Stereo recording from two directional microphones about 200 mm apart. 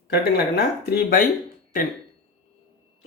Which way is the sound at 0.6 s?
50° left (ahead or behind).